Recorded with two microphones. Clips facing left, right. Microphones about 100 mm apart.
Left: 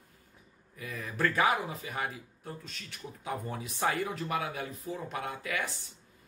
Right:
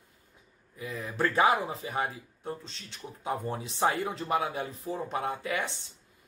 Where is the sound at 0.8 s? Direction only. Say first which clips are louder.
Right 2 dB; 20° right (ahead or behind).